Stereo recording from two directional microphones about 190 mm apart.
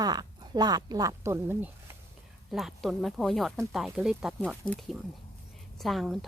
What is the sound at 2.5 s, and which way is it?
Speech, centre (ahead or behind).